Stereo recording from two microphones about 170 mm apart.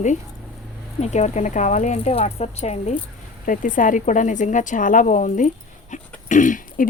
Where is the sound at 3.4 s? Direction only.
50° left (ahead or behind).